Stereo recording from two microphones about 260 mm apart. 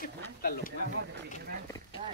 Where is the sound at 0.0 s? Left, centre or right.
Left.